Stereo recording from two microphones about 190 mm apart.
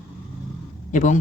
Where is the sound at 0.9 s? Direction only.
40° left (ahead or behind).